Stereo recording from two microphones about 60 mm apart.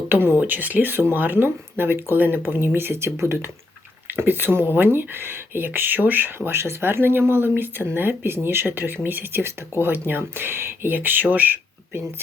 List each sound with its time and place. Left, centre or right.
0.1 s speech: right
4.2 s speech: right